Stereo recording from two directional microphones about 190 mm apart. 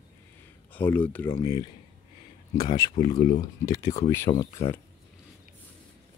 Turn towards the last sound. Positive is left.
turn(degrees=15)  # may be behind; listen again after turning